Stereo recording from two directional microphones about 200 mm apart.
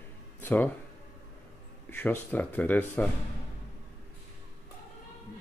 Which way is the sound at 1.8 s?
10° left (ahead or behind).